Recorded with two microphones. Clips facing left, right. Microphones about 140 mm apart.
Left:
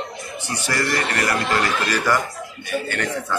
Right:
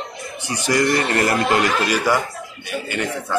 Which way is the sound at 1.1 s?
25° right (ahead or behind).